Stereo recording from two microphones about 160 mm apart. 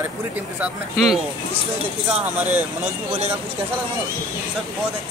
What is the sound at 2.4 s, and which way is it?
Speech, 10° right (ahead or behind).